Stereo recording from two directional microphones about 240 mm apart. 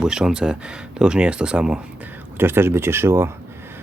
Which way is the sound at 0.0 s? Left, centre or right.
Centre.